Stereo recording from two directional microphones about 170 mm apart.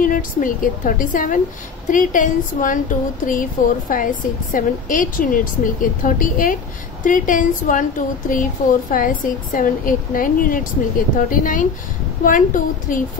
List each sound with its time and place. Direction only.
0.0 s a woman's voice: 50° left (ahead or behind)